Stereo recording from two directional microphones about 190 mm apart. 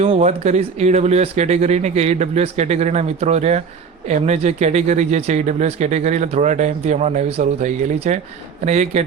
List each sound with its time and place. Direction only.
0.0 s speech: 35° right (ahead or behind)